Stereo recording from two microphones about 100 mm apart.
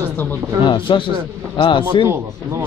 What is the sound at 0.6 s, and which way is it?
A man's voice, 55° left (ahead or behind).